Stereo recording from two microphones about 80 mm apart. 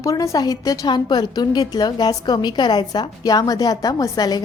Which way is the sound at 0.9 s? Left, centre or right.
Left.